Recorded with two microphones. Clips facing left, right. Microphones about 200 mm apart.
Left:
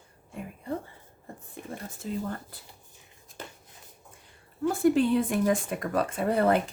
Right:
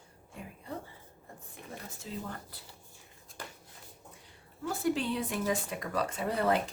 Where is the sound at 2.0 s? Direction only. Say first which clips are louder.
Left 8 dB; 50° left (ahead or behind).